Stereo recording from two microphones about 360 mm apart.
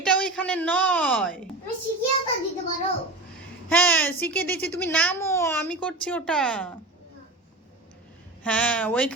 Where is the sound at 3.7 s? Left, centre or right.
Centre.